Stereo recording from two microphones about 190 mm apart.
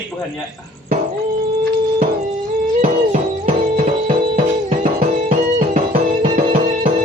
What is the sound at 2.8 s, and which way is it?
Music, 35° right (ahead or behind).